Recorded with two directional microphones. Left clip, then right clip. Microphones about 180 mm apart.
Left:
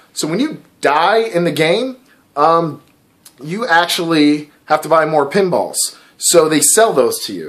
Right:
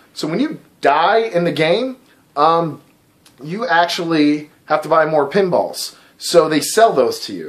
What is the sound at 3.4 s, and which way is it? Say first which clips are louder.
Speech: left 2 dB; 25° left (ahead or behind).